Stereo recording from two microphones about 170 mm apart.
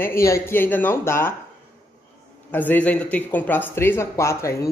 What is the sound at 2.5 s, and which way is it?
Speech, 10° left (ahead or behind).